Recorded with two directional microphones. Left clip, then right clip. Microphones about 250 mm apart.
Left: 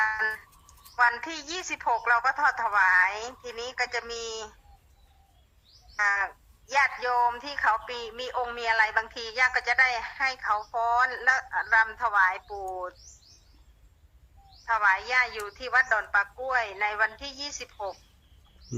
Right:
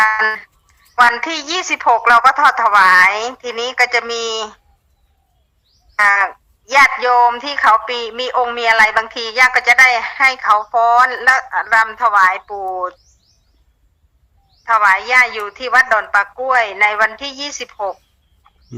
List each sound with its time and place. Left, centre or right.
0.0 s a sound: right
1.0 s speech: right
6.0 s speech: right
14.6 s speech: right